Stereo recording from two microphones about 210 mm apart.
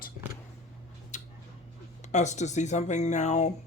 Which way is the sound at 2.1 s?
35° left (ahead or behind).